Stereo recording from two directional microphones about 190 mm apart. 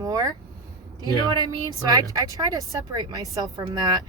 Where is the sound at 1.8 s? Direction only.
20° right (ahead or behind).